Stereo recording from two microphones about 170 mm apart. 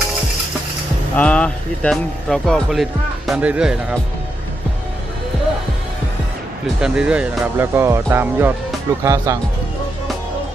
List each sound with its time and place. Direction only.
1.1 s speech: 10° left (ahead or behind)
6.7 s speech: 5° right (ahead or behind)